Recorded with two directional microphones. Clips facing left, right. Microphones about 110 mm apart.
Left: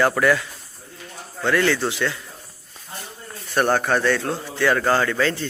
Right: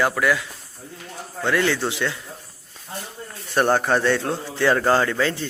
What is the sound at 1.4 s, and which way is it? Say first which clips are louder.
Speech: left 1 dB; 15° right (ahead or behind).